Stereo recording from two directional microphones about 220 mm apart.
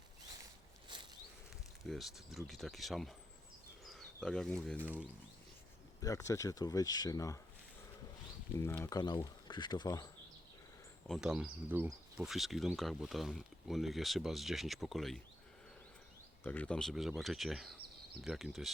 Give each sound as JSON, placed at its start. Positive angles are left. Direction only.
{"t": 0.9, "sound": "a sound", "side_deg": -20}
{"t": 1.8, "sound": "speech", "side_deg": 0}
{"t": 6.0, "sound": "speech", "side_deg": 15}
{"t": 8.5, "sound": "speech", "side_deg": 10}
{"t": 11.1, "sound": "speech", "side_deg": -5}
{"t": 16.4, "sound": "speech", "side_deg": 10}